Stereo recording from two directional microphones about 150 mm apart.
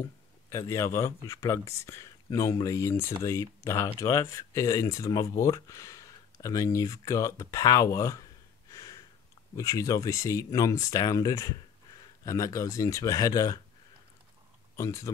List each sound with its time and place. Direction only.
0.0 s speech: 20° left (ahead or behind)
14.8 s speech: 20° left (ahead or behind)